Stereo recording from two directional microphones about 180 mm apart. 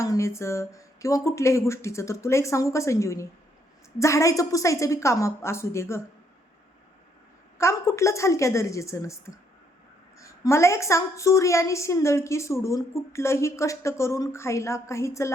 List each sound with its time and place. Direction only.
0.0 s a woman's voice: 15° left (ahead or behind)
7.6 s a woman's voice: 15° left (ahead or behind)